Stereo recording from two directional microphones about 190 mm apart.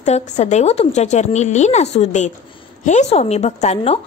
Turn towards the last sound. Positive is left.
turn(degrees=35)  # may be behind; listen again after turning